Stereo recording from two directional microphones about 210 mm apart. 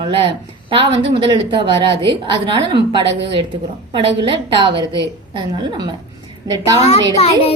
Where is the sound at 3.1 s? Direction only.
55° right (ahead or behind).